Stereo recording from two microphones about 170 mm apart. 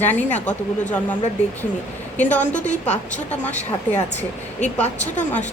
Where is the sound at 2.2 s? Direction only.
10° left (ahead or behind).